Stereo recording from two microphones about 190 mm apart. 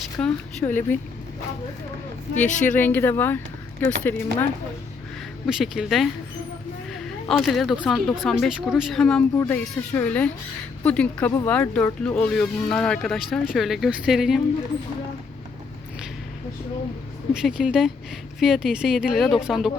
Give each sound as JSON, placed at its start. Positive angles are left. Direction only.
{"t": 0.2, "sound": "a woman's voice", "side_deg": 10}
{"t": 2.3, "sound": "a woman's voice", "side_deg": 40}
{"t": 2.7, "sound": "a woman's voice", "side_deg": 10}
{"t": 5.5, "sound": "speech", "side_deg": 0}
{"t": 17.3, "sound": "speech", "side_deg": -5}